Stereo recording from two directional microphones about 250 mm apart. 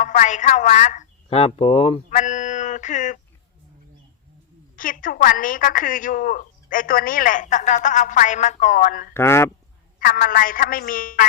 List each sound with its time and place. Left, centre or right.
0.0 s speech: left
4.8 s a woman's voice: left
9.1 s speech: centre
10.0 s a woman's voice: left